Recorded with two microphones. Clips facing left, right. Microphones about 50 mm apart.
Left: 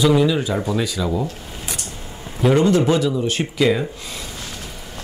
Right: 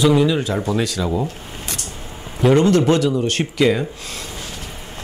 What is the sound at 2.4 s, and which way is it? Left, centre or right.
Speech, centre.